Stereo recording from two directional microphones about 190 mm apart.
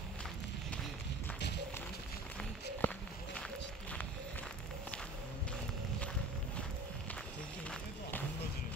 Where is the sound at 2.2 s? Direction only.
5° left (ahead or behind).